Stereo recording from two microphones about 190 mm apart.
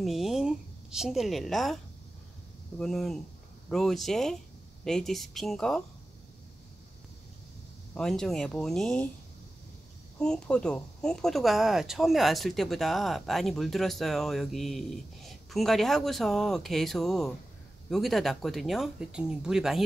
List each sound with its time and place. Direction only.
0.0 s a woman's voice: centre (ahead or behind)
2.8 s speech: centre (ahead or behind)
7.9 s speech: 5° left (ahead or behind)
10.1 s speech: 5° left (ahead or behind)